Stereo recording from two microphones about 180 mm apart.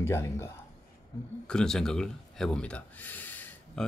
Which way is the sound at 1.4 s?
5° left (ahead or behind).